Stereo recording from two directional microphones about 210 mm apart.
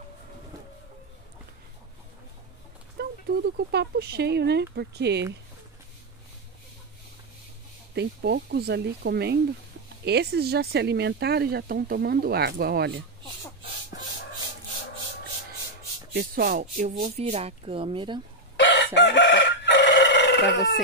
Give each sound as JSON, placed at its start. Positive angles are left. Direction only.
{"t": 3.0, "sound": "speech", "side_deg": -50}
{"t": 7.9, "sound": "speech", "side_deg": -55}
{"t": 16.1, "sound": "speech", "side_deg": -45}
{"t": 18.6, "sound": "chicken", "side_deg": 55}